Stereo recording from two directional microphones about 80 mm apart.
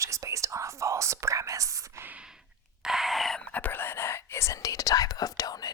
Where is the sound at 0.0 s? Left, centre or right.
Right.